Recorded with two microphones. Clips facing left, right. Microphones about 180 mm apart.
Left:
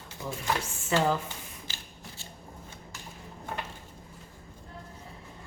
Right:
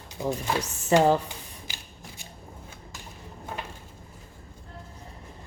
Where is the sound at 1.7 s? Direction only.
15° right (ahead or behind).